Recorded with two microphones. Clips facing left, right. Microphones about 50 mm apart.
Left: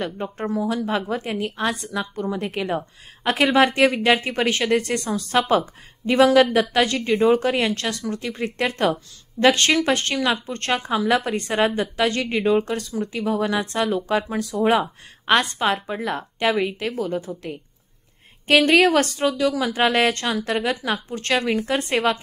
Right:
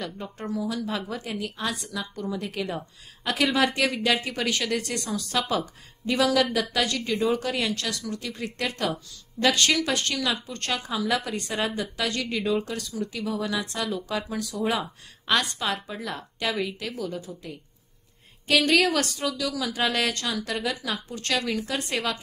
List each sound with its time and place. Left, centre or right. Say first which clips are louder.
0.0 s speech: left 7 dB; left
18.5 s speech: left 6 dB; left